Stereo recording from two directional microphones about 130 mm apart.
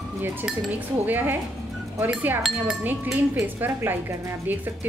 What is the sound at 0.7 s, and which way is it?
Speech, 15° right (ahead or behind).